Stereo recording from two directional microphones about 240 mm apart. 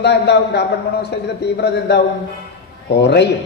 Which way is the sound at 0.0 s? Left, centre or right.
Left.